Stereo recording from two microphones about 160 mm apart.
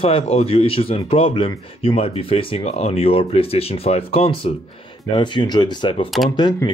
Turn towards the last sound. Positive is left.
turn(degrees=25)  # may be behind; listen again after turning